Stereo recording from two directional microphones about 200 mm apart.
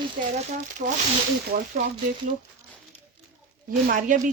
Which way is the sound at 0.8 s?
45° right (ahead or behind).